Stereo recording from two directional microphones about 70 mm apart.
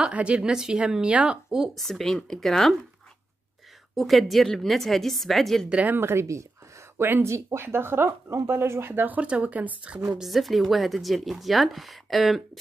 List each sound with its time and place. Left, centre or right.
0.0 s speech: centre
1.8 s a woman's voice: centre
3.9 s a woman's voice: centre
5.7 s a woman's voice: centre
5.9 s speech: right
10.0 s a woman's voice: centre